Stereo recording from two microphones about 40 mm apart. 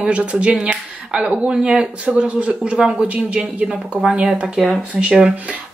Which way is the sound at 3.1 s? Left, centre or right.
Right.